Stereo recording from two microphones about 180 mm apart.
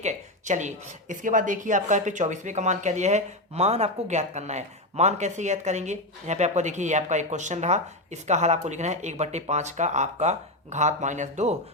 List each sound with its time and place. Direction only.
0.0 s speech: 40° right (ahead or behind)